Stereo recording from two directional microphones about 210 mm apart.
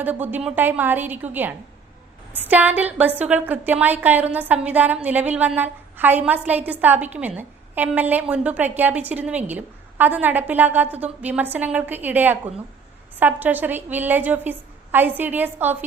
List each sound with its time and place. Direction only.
0.0 s a woman's voice: 10° right (ahead or behind)